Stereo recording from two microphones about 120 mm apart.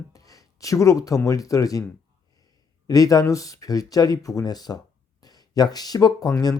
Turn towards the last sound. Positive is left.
turn(degrees=30)  # may be behind; listen again after turning